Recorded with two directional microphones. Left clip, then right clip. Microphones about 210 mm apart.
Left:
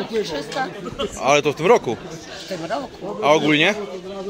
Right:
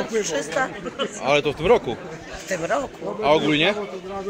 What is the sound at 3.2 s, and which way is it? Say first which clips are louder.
Speech: left 3 dB; 10° left (ahead or behind).